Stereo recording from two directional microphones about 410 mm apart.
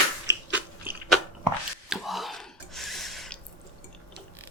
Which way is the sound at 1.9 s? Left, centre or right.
Centre.